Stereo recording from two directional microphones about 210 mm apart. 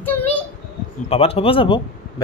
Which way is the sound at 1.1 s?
30° left (ahead or behind).